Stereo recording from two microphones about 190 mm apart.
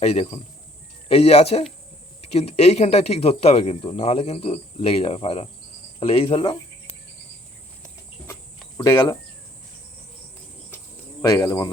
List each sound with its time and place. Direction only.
0.0 s speech: 35° left (ahead or behind)
6.0 s cricket: 30° left (ahead or behind)
8.8 s speech: 20° left (ahead or behind)
11.2 s speech: 15° left (ahead or behind)